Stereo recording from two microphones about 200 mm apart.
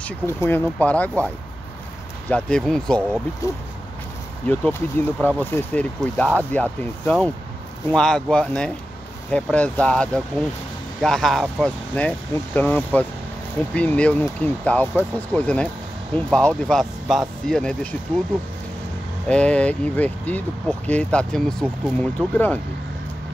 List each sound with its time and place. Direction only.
0.0 s speech: 10° left (ahead or behind)
3.4 s speech: 15° left (ahead or behind)
19.2 s speech: 5° left (ahead or behind)